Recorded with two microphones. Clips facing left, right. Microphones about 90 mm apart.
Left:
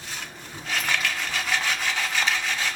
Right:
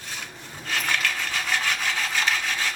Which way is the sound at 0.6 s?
Centre (ahead or behind).